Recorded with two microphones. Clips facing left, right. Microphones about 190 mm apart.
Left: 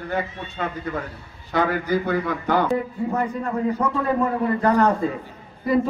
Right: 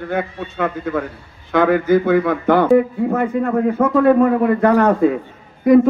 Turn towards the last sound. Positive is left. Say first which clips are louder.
# right 10 dB
turn(degrees=-65)  # may be behind; listen again after turning